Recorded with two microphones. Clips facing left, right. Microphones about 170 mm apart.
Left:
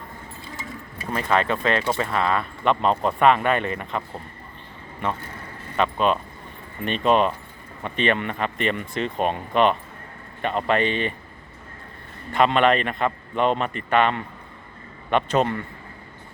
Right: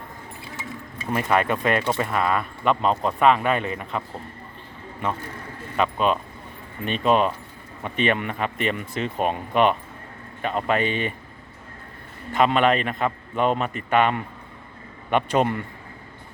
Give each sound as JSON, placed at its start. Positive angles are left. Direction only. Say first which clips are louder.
{"t": 1.1, "sound": "speech", "louder": "right 1 dB", "side_deg": -10}
{"t": 5.7, "sound": "speech", "louder": "left 1 dB", "side_deg": -5}
{"t": 12.3, "sound": "speech", "louder": "left 1 dB", "side_deg": -5}